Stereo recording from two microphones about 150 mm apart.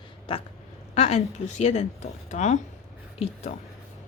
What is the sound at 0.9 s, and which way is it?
Speech, 50° left (ahead or behind).